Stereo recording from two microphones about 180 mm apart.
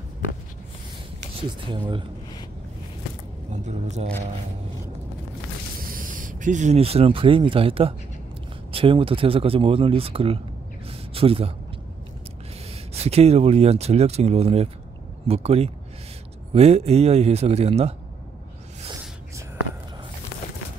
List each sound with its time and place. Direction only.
1.7 s speech: 25° right (ahead or behind)
3.6 s speech: 40° right (ahead or behind)
5.9 s speech: 50° right (ahead or behind); by 10.4 s 30° right (ahead or behind)
10.9 s a sound: 30° right (ahead or behind)
12.9 s speech: 35° right (ahead or behind)